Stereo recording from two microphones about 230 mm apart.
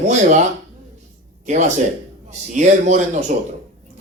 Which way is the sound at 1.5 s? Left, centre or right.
Right.